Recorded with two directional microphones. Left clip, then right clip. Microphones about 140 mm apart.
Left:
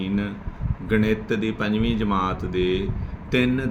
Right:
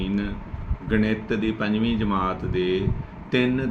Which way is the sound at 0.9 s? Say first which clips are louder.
Left 2 dB; 45° left (ahead or behind).